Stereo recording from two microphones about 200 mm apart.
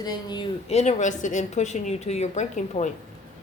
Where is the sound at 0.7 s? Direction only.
35° left (ahead or behind).